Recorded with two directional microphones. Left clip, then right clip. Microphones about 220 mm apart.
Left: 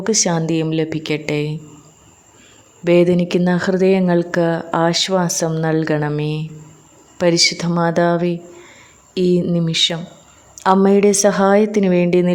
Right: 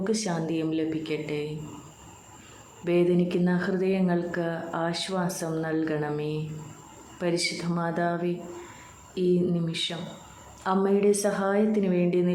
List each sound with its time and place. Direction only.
0.0 s a woman's voice: 45° left (ahead or behind)
2.8 s a woman's voice: 50° left (ahead or behind)